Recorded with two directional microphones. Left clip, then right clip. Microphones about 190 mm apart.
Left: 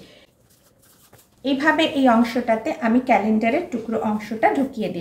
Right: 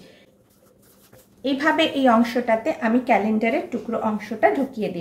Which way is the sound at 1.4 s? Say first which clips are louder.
Left 1 dB; 10° right (ahead or behind).